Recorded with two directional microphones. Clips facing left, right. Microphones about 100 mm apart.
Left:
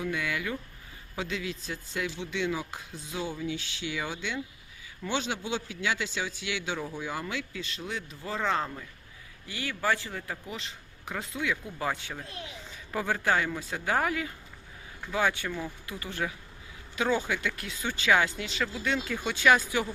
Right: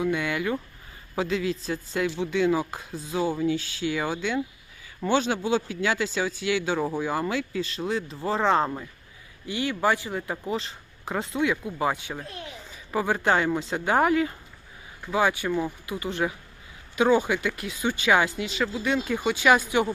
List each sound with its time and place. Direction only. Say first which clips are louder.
0.0 s a man's voice: right 6 dB; 30° right (ahead or behind)
9.5 s speech: right 5 dB; 20° right (ahead or behind)
10.3 s speech: right 10 dB; 35° right (ahead or behind)
11.6 s speech: right 6 dB; 15° right (ahead or behind)
12.7 s a sound: right 5 dB; 10° right (ahead or behind)
13.1 s speech: right 5 dB; 30° right (ahead or behind)
15.1 s speech: right 5 dB; 10° right (ahead or behind)